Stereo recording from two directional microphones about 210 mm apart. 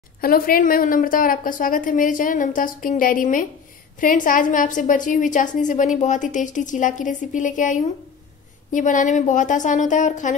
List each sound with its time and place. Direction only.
0.2 s a woman's voice: 45° left (ahead or behind)